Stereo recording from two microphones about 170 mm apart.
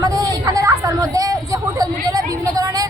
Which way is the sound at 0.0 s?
20° right (ahead or behind).